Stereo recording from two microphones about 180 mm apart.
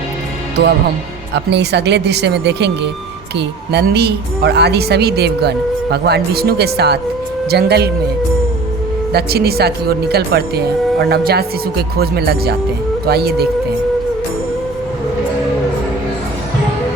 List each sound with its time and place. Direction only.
1.3 s a woman's voice: 70° right (ahead or behind)
9.1 s a woman's voice: 60° right (ahead or behind)